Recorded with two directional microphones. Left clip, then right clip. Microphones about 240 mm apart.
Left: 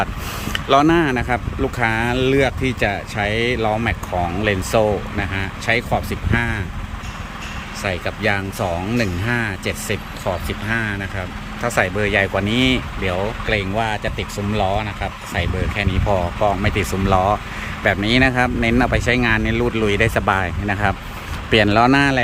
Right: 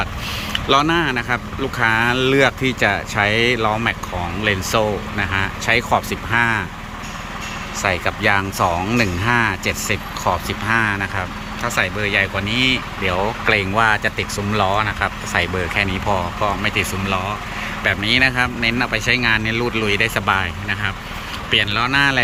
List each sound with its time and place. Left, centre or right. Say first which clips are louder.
0.5 s speech: left 2 dB; centre
7.8 s speech: right 4 dB; centre